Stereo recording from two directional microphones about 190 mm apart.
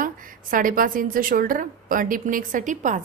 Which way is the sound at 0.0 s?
45° right (ahead or behind).